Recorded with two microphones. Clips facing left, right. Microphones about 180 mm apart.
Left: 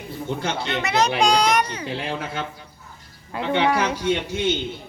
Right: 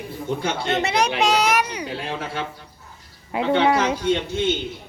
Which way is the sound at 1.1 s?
5° right (ahead or behind).